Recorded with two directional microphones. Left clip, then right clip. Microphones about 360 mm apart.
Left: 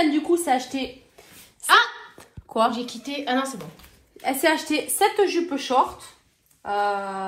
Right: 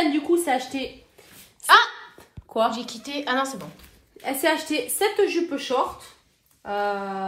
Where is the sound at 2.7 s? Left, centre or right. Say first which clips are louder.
Left 1 dB; centre.